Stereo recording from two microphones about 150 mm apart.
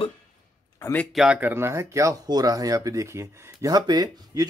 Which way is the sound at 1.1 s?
5° right (ahead or behind).